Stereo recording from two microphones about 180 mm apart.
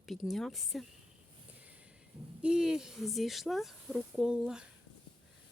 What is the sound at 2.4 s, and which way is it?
Speech, 5° right (ahead or behind).